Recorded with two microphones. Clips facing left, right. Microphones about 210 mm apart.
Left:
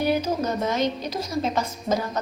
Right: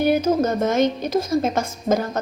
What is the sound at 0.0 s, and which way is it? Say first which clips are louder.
A woman's voice: right 5 dB; 50° right (ahead or behind).